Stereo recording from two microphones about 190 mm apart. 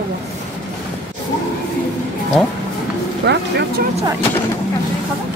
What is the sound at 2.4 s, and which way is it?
Speech, 5° left (ahead or behind).